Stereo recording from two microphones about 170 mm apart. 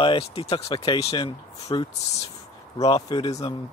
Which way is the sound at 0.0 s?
35° left (ahead or behind).